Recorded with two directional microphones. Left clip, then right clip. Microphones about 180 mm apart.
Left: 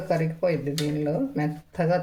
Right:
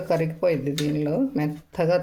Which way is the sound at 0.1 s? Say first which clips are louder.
Right 2 dB; 50° right (ahead or behind).